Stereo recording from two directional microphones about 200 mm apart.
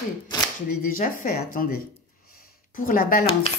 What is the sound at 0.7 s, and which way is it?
Speech, 45° left (ahead or behind).